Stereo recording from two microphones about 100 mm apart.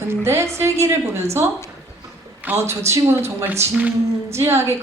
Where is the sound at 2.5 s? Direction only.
25° right (ahead or behind).